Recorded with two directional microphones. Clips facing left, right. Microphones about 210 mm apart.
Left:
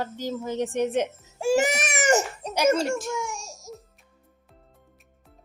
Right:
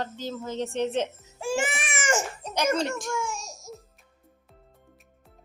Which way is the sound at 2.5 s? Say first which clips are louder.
Left 4 dB; 10° left (ahead or behind).